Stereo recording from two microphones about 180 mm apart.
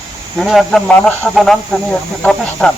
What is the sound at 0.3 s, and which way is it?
A man's voice, centre (ahead or behind).